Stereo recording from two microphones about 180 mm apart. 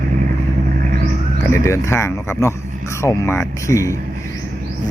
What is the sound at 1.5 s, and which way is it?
Speech, 15° left (ahead or behind).